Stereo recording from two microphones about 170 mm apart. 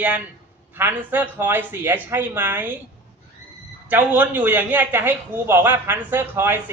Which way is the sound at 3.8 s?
10° right (ahead or behind).